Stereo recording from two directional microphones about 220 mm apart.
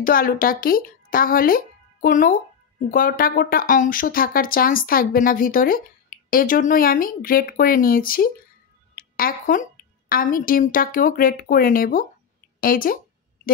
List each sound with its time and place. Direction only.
0.0 s a woman's voice: 40° left (ahead or behind)